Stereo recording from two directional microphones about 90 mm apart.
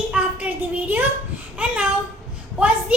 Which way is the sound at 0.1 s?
15° right (ahead or behind).